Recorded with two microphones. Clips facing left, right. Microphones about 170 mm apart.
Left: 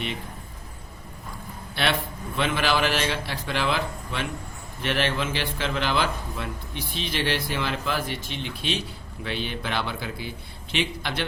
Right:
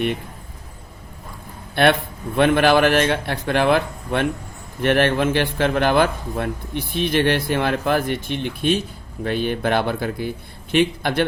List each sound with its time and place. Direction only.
1.7 s a man's voice: 55° right (ahead or behind)